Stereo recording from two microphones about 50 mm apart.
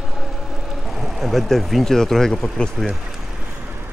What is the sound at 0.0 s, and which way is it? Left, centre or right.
Vehicle, centre.